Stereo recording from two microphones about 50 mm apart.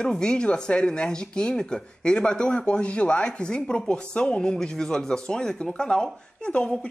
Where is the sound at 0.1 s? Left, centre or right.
Centre.